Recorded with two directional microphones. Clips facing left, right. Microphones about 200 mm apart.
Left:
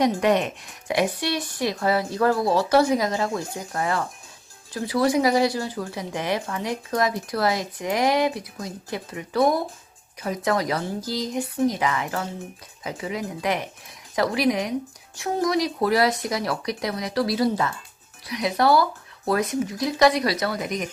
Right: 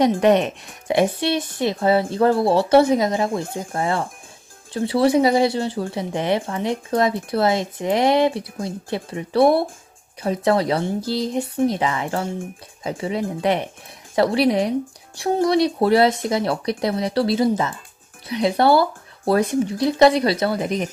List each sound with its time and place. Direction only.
0.2 s a woman's voice: 25° right (ahead or behind)